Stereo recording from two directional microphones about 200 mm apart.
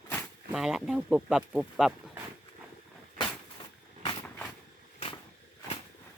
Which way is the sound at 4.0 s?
20° left (ahead or behind).